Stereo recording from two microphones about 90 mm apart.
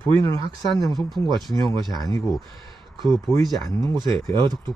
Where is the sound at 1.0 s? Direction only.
Centre (ahead or behind).